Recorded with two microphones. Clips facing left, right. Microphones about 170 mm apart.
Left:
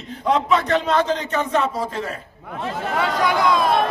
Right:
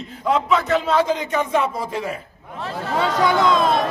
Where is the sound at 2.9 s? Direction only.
25° right (ahead or behind).